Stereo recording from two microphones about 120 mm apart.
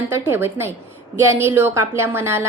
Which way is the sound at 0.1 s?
20° right (ahead or behind).